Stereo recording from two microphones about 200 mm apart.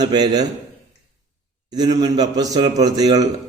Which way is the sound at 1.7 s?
20° right (ahead or behind).